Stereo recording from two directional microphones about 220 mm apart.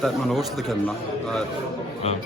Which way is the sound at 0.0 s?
Centre (ahead or behind).